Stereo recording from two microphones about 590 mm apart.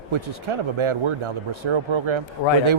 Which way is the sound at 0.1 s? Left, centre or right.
Right.